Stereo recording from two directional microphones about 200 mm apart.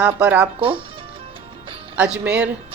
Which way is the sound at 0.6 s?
25° right (ahead or behind).